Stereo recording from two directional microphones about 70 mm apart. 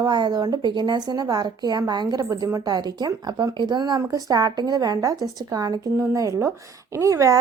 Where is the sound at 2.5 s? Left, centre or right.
Right.